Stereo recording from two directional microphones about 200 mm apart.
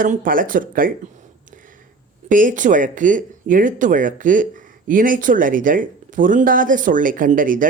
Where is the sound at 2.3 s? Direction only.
40° right (ahead or behind).